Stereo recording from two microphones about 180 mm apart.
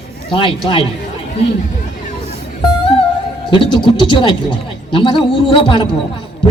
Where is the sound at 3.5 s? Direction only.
25° left (ahead or behind).